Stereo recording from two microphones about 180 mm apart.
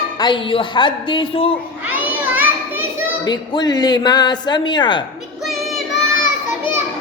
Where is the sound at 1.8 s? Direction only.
10° right (ahead or behind).